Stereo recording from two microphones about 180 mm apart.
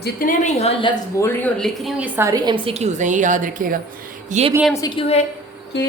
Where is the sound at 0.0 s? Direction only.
50° left (ahead or behind).